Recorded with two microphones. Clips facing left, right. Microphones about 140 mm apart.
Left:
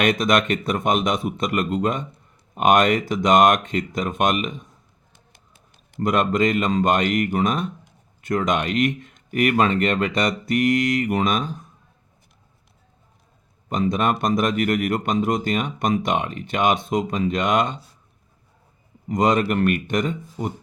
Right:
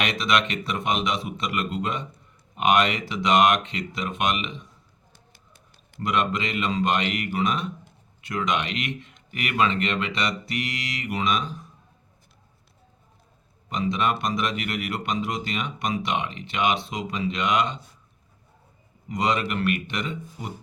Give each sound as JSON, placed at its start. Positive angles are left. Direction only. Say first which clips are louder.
{"t": 0.0, "sound": "speech", "louder": "left 5 dB", "side_deg": 50}
{"t": 6.0, "sound": "speech", "louder": "left 6 dB", "side_deg": 45}
{"t": 13.7, "sound": "speech", "louder": "left 4 dB", "side_deg": 45}
{"t": 19.0, "sound": "speech", "louder": "left 6 dB", "side_deg": 45}